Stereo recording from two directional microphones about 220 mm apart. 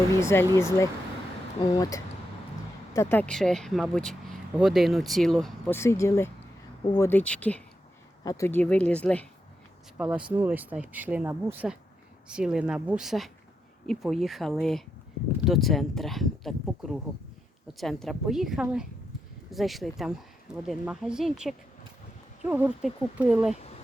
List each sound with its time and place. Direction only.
0.1 s speech: 10° left (ahead or behind)
10.0 s speech: 5° right (ahead or behind)